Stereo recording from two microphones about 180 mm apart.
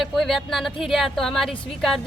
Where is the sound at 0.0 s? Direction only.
Centre (ahead or behind).